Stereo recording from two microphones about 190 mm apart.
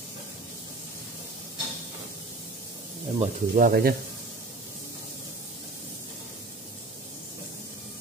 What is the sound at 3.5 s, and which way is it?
Speech, 50° right (ahead or behind).